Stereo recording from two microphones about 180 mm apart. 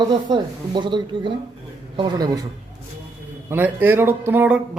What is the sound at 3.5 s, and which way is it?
Speech, 10° right (ahead or behind).